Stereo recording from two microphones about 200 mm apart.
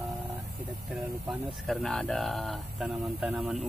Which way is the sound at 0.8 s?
Centre (ahead or behind).